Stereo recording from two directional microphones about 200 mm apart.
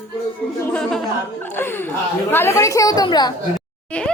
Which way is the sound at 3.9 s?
5° left (ahead or behind).